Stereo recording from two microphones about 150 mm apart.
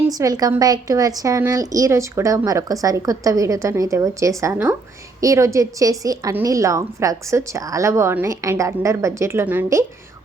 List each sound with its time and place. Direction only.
0.1 s a woman's voice: 25° right (ahead or behind)